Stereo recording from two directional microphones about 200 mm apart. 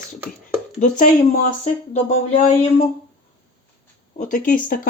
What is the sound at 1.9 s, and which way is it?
Speech, 35° left (ahead or behind).